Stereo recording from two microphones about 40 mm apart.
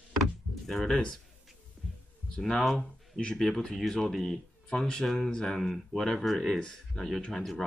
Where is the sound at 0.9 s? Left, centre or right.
Left.